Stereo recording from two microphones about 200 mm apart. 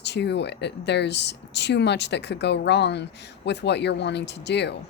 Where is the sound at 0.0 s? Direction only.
60° left (ahead or behind).